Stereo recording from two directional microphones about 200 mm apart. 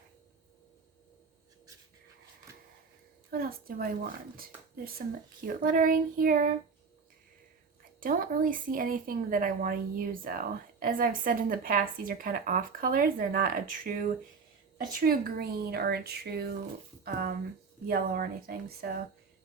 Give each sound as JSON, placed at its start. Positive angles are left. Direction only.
{"t": 3.2, "sound": "a woman's voice", "side_deg": -45}
{"t": 5.5, "sound": "a woman's voice", "side_deg": -45}
{"t": 8.0, "sound": "a woman's voice", "side_deg": -45}